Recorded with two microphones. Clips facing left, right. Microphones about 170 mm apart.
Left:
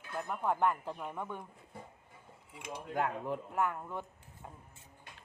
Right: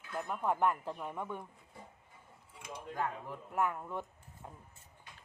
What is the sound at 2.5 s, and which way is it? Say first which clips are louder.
Speech: left 5 dB; 75° left (ahead or behind).